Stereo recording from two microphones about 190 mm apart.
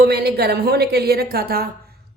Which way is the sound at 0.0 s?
55° right (ahead or behind).